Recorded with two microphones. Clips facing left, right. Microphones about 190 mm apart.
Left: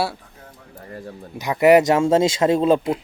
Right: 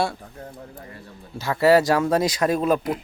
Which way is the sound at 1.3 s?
20° left (ahead or behind).